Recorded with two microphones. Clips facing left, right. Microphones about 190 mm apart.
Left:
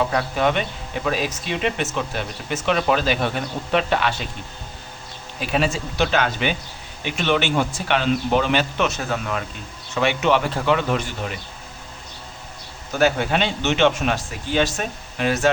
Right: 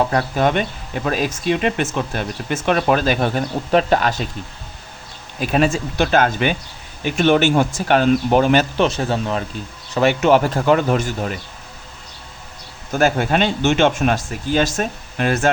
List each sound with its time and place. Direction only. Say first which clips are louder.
0.1 s a man's voice: right 3 dB; 45° right (ahead or behind)
5.4 s a man's voice: right 5 dB; 45° right (ahead or behind)
8.8 s speech: right 5 dB; 30° right (ahead or behind)
9.9 s a man's voice: right 5 dB; 40° right (ahead or behind)
13.0 s a man's voice: right 2 dB; 45° right (ahead or behind)